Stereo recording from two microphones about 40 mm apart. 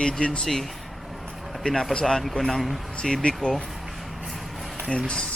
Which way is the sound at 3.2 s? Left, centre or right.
Left.